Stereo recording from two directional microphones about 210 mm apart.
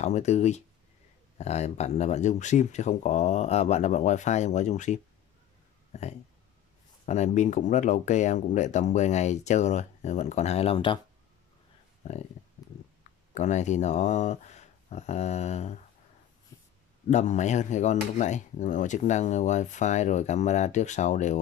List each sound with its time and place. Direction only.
0.0 s speech: 35° left (ahead or behind)
12.0 s speech: 30° left (ahead or behind)
13.3 s speech: 35° left (ahead or behind)
16.5 s a sound: 15° left (ahead or behind)
17.1 s speech: 35° left (ahead or behind)